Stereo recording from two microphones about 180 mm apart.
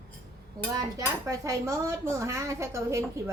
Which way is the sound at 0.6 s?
20° right (ahead or behind).